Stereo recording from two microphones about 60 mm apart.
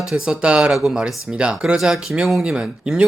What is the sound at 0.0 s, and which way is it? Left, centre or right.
Speech, centre.